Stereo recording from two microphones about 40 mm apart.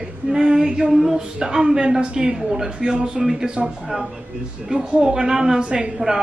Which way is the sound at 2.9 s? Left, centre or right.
Centre.